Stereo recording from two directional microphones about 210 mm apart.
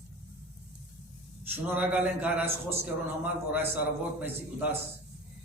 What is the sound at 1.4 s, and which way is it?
A man's voice, 10° right (ahead or behind).